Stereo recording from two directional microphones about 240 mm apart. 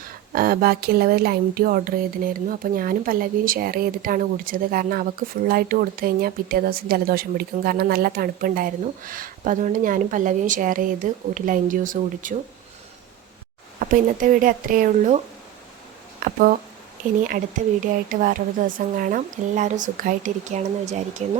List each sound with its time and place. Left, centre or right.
0.0 s speech: right
13.7 s speech: right
16.2 s speech: right
18.1 s speech: right